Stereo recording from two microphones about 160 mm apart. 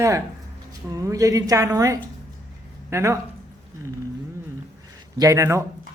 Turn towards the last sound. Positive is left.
turn(degrees=-20)  # may be behind; listen again after turning